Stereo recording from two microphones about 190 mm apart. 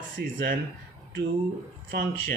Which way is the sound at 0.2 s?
50° right (ahead or behind).